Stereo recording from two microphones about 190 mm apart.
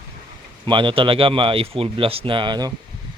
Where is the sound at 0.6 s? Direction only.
25° right (ahead or behind).